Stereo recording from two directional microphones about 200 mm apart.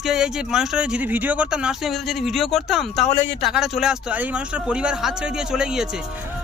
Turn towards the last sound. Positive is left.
turn(degrees=-5)  # may be behind; listen again after turning